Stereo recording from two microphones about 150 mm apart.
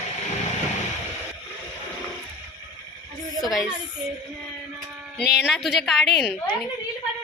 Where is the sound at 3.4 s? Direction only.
Centre (ahead or behind).